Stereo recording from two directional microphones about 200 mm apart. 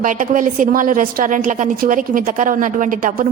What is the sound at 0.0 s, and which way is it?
A woman's voice, 40° right (ahead or behind).